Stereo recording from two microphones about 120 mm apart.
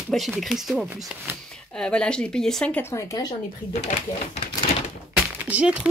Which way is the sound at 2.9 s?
30° left (ahead or behind).